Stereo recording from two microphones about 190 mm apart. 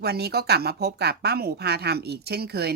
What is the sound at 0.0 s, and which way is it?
Speech, 55° right (ahead or behind).